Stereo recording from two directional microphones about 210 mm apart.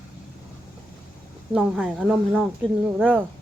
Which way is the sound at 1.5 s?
5° right (ahead or behind).